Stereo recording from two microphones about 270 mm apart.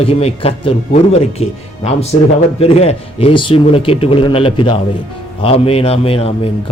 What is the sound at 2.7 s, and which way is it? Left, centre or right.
Speech, left.